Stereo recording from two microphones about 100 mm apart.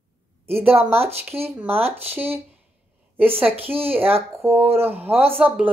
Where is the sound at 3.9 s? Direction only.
75° right (ahead or behind).